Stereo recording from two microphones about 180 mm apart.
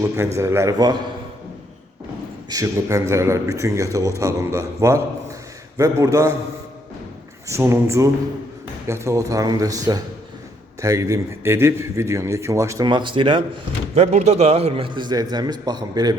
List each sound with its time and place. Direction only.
0.3 s a man's voice: 15° right (ahead or behind)
2.5 s a man's voice: 20° right (ahead or behind)
7.4 s a man's voice: 15° right (ahead or behind)
13.9 s a man's voice: 35° right (ahead or behind); by 16.1 s 20° right (ahead or behind)